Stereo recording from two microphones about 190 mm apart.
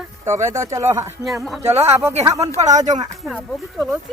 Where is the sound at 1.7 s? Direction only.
35° right (ahead or behind).